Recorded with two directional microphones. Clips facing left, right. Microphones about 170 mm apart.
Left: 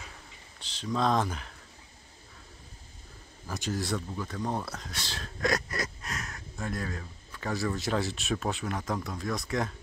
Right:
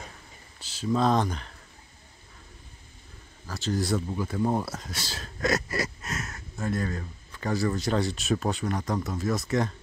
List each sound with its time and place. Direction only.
0.6 s speech: 5° right (ahead or behind)
3.4 s speech: 15° left (ahead or behind)
3.7 s speech: centre (ahead or behind)